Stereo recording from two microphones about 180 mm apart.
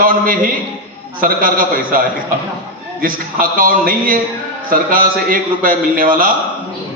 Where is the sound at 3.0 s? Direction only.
50° right (ahead or behind).